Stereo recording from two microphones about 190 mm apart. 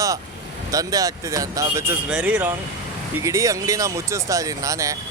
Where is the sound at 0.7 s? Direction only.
20° right (ahead or behind).